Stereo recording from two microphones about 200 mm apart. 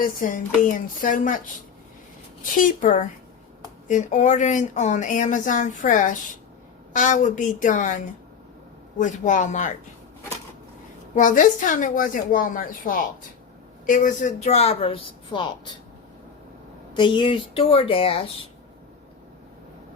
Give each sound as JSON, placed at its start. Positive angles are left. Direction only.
{"t": 0.0, "sound": "speech", "side_deg": 40}
{"t": 2.6, "sound": "speech", "side_deg": 40}
{"t": 11.1, "sound": "speech", "side_deg": 40}
{"t": 16.9, "sound": "a woman's voice", "side_deg": 25}